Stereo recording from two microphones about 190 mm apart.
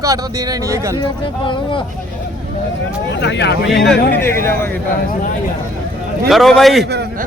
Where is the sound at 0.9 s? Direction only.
25° left (ahead or behind).